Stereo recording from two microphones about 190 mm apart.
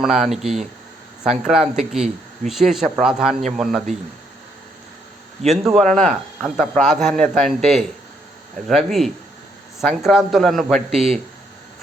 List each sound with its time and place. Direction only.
0.0 s speech: centre (ahead or behind)
5.5 s speech: centre (ahead or behind)